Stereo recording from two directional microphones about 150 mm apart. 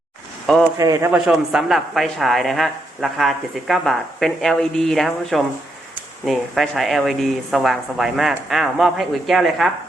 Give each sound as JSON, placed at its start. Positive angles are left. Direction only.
{"t": 0.8, "sound": "a man's voice", "side_deg": -20}
{"t": 1.1, "sound": "speech", "side_deg": -5}